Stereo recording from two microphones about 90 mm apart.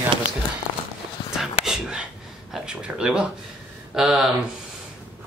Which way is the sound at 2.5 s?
10° right (ahead or behind).